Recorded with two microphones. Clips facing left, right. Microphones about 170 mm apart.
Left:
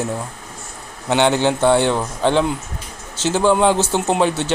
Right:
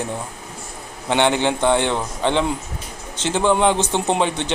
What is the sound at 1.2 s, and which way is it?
Speech, 15° right (ahead or behind).